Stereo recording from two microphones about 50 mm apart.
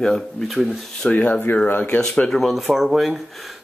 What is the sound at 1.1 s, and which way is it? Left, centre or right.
Speech, left.